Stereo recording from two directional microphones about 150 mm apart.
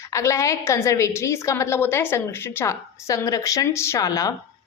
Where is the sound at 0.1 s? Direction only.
20° left (ahead or behind).